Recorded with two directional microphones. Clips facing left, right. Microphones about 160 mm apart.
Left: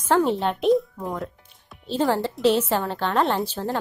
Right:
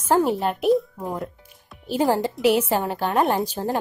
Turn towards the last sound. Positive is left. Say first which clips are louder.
# right 2 dB
turn(degrees=-15)  # may be behind; listen again after turning